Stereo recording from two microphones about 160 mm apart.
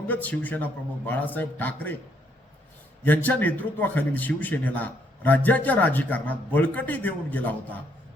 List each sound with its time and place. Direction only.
0.1 s a man's voice: 10° left (ahead or behind)
3.0 s a man's voice: 10° left (ahead or behind)